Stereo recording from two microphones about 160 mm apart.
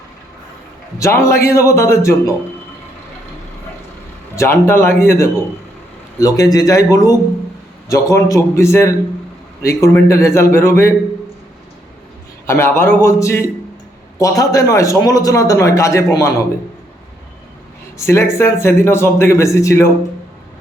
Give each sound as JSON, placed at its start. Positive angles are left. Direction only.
{"t": 0.9, "sound": "speech", "side_deg": 20}
{"t": 4.4, "sound": "a man's voice", "side_deg": 15}
{"t": 12.5, "sound": "a man's voice", "side_deg": 15}
{"t": 18.0, "sound": "speech", "side_deg": 15}